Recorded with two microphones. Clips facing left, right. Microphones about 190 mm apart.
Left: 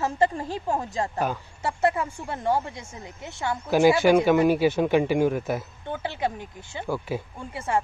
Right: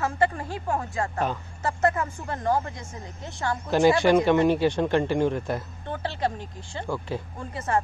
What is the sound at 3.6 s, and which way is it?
A woman's voice, 5° left (ahead or behind).